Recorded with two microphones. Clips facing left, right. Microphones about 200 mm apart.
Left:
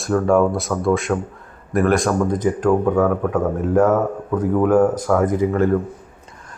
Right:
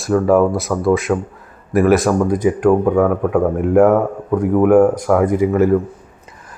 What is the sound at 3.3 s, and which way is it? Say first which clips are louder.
Speech: right 4 dB; 15° right (ahead or behind).